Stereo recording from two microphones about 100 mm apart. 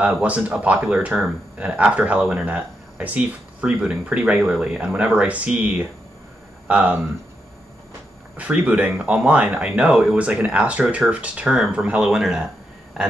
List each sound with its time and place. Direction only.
0.0 s speech: 15° right (ahead or behind)
8.4 s speech: 15° right (ahead or behind)